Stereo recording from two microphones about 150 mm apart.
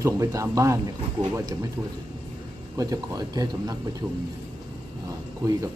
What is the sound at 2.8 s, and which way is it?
Speech, 25° right (ahead or behind).